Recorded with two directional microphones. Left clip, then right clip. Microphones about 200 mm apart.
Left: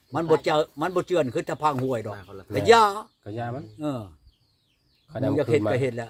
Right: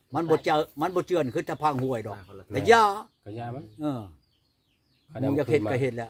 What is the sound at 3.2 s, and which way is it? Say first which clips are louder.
Speech: left 5 dB; 30° left (ahead or behind).